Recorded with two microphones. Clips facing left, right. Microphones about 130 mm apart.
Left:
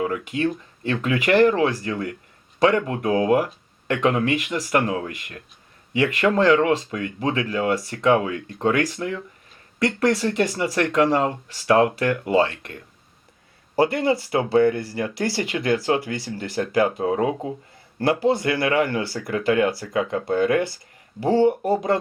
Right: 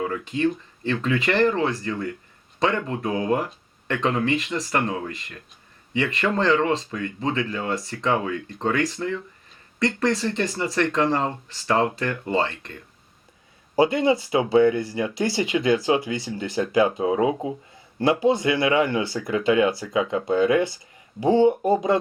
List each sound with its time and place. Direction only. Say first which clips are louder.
0.0 s speech: even; 5° left (ahead or behind)
13.7 s speech: right 1 dB; 20° right (ahead or behind)